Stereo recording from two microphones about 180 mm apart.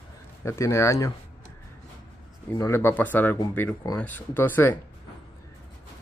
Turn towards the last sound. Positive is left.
turn(degrees=10)  # may be behind; listen again after turning